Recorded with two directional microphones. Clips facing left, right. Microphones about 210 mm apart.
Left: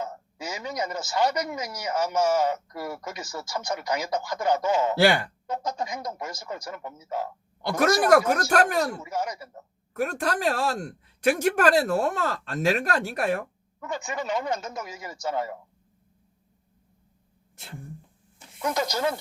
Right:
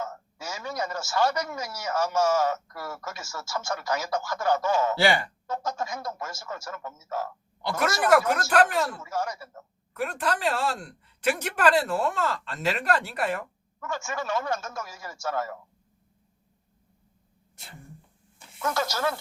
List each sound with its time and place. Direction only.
0.0 s a man's voice: 20° left (ahead or behind)
7.6 s a man's voice: 45° left (ahead or behind)
9.0 s speech: 20° left (ahead or behind)
9.9 s a man's voice: 45° left (ahead or behind)
13.7 s speech: 20° left (ahead or behind)
18.6 s speech: 20° left (ahead or behind)